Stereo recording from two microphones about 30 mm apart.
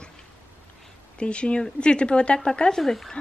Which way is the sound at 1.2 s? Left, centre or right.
Left.